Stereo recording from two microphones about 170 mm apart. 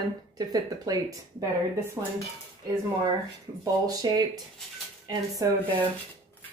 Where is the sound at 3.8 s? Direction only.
20° right (ahead or behind).